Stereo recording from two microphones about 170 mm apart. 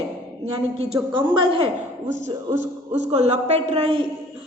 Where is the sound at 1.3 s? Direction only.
30° right (ahead or behind).